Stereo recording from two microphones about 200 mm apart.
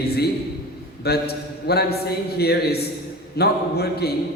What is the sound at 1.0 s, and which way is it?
A man's voice, 55° left (ahead or behind).